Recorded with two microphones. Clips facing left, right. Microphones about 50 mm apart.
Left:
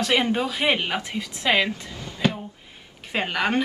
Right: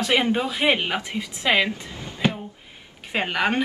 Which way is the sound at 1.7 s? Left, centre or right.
Right.